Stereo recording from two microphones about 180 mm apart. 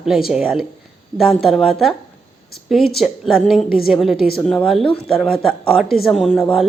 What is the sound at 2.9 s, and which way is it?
Speech, centre (ahead or behind).